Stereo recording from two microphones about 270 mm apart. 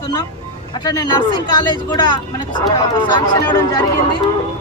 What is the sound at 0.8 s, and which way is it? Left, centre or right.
Speech, centre.